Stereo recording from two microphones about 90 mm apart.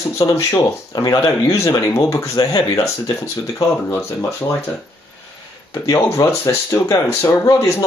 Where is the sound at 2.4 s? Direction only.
45° left (ahead or behind).